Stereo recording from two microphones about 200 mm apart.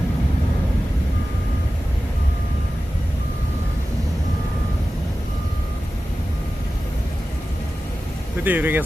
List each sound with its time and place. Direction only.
8.4 s speech: 10° right (ahead or behind)